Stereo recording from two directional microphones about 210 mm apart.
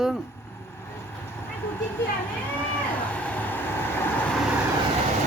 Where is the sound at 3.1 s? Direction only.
5° left (ahead or behind).